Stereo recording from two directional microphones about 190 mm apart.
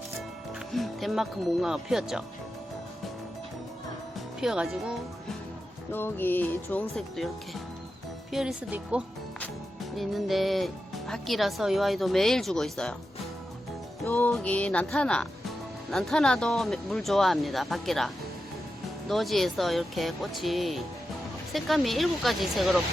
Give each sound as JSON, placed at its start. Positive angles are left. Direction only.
{"t": 0.7, "sound": "speech", "side_deg": 0}
{"t": 4.4, "sound": "speech", "side_deg": -5}
{"t": 5.9, "sound": "speech", "side_deg": 10}
{"t": 14.1, "sound": "speech", "side_deg": 5}